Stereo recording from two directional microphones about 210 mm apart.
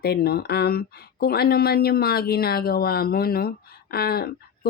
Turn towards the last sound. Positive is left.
turn(degrees=45)  # may be behind; listen again after turning